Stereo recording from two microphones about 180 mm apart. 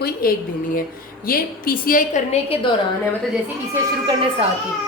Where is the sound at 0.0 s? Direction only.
55° left (ahead or behind).